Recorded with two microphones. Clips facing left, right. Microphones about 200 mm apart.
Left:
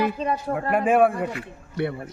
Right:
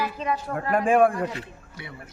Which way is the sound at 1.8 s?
65° left (ahead or behind).